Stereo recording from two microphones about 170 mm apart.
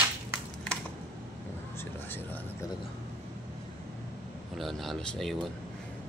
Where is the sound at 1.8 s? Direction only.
10° left (ahead or behind).